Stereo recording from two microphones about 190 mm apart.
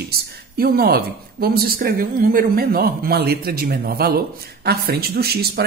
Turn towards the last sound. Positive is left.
turn(degrees=-55)  # may be behind; listen again after turning